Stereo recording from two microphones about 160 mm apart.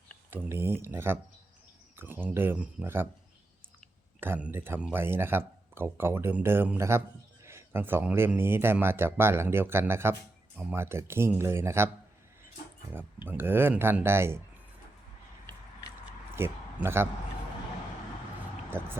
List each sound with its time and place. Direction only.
0.3 s speech: 15° right (ahead or behind)
4.2 s speech: 10° right (ahead or behind)
13.2 s speech: 15° right (ahead or behind)
16.3 s a sound: 15° right (ahead or behind)
18.7 s speech: 15° right (ahead or behind)